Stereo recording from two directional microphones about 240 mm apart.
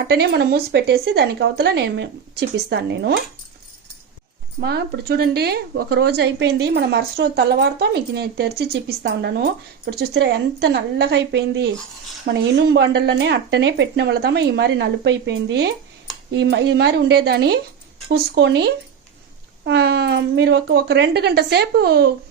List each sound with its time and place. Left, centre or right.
0.1 s speech: right
4.6 s speech: right